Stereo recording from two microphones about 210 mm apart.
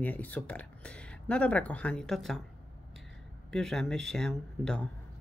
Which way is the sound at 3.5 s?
Centre (ahead or behind).